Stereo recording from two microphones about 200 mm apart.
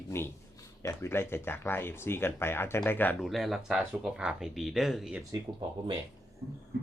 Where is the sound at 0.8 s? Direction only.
15° left (ahead or behind); by 5.2 s centre (ahead or behind).